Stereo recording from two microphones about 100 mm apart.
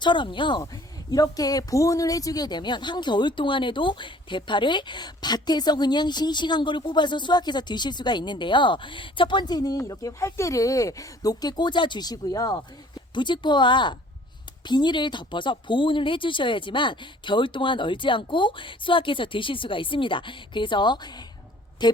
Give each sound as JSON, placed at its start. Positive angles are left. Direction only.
{"t": 0.0, "sound": "a woman's voice", "side_deg": 50}
{"t": 1.1, "sound": "a woman's voice", "side_deg": 40}
{"t": 13.1, "sound": "a woman's voice", "side_deg": 50}